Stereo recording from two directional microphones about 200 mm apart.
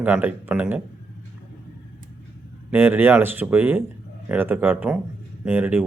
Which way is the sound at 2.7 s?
10° right (ahead or behind).